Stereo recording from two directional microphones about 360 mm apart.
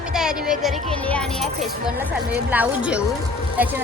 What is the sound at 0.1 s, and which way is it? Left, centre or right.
A woman's voice, centre.